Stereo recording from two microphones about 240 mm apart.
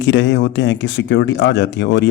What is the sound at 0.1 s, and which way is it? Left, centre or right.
Speech, left.